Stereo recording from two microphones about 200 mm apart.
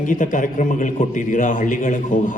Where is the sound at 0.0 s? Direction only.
40° left (ahead or behind).